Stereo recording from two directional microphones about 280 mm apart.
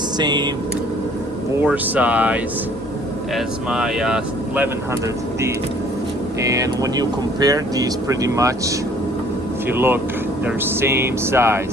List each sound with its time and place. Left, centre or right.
0.2 s speech: centre
1.6 s speech: centre
6.4 s speech: centre
9.7 s speech: centre